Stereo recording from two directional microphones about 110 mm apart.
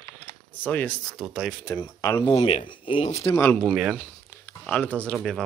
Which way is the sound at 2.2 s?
55° left (ahead or behind).